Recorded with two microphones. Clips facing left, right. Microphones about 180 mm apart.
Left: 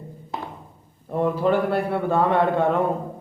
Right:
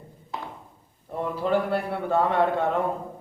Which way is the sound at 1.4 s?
65° left (ahead or behind).